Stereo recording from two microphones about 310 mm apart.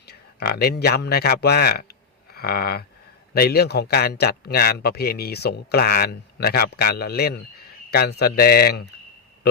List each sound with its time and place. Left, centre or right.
0.1 s a man's voice: left
2.3 s a sound: left
3.3 s a man's voice: left